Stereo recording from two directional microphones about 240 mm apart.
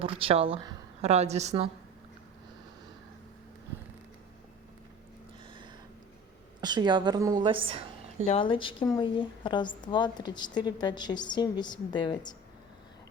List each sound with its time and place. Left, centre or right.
0.0 s speech: right
6.6 s a woman's voice: centre
8.3 s speech: left